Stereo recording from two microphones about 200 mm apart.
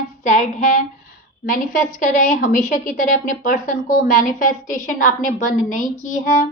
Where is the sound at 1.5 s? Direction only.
40° left (ahead or behind).